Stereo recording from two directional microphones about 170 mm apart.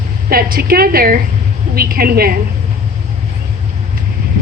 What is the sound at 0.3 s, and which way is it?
A woman's voice, 60° right (ahead or behind).